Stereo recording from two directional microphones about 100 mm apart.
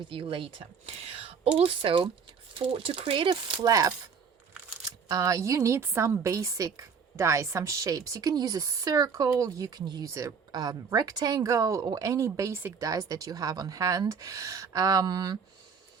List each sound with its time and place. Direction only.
0.1 s speech: 60° right (ahead or behind)
0.9 s speech: 85° right; by 3.7 s 55° right (ahead or behind)
3.7 s a woman's voice: 35° right (ahead or behind)
5.0 s a woman's voice: 35° right (ahead or behind)